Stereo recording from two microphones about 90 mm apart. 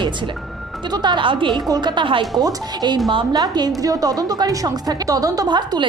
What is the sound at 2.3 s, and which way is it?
A woman's voice, 50° right (ahead or behind).